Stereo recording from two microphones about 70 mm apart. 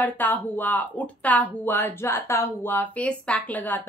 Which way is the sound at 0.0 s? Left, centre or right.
Left.